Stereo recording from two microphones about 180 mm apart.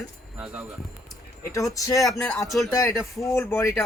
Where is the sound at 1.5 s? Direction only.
20° left (ahead or behind).